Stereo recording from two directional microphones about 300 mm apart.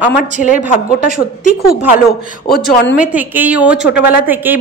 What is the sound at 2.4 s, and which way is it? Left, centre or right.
Speech, left.